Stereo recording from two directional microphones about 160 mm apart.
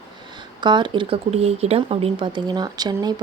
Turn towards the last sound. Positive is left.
turn(degrees=-25)  # may be behind; listen again after turning